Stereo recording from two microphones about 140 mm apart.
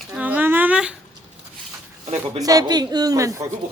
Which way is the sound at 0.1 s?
10° right (ahead or behind).